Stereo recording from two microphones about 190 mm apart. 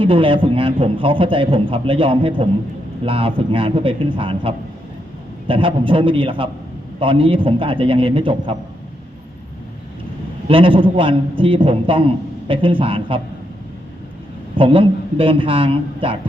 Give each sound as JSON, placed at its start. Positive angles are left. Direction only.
{"t": 0.0, "sound": "a man's voice", "side_deg": -30}
{"t": 10.5, "sound": "a man's voice", "side_deg": -30}
{"t": 14.5, "sound": "a man's voice", "side_deg": -25}